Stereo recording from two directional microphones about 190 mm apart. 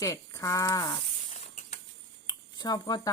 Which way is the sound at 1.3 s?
35° left (ahead or behind).